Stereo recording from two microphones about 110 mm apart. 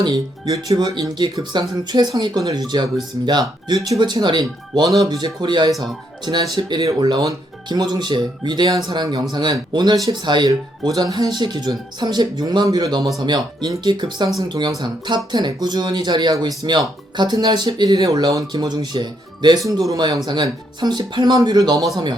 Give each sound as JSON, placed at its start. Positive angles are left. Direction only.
{"t": 0.0, "sound": "speech", "side_deg": -35}
{"t": 3.8, "sound": "speech", "side_deg": -30}